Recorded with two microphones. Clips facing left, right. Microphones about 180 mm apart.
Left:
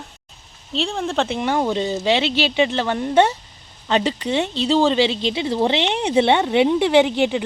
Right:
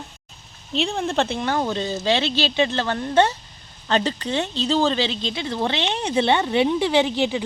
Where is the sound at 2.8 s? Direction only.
20° left (ahead or behind).